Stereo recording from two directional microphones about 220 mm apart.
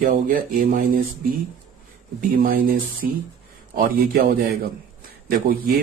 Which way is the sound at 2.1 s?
40° right (ahead or behind).